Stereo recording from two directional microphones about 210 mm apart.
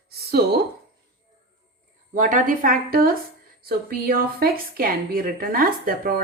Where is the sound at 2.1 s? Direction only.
40° right (ahead or behind).